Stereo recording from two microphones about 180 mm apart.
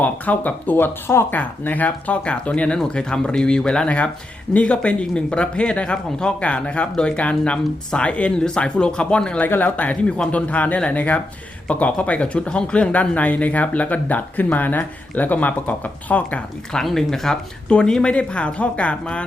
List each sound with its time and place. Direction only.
0.0 s speech: 10° left (ahead or behind)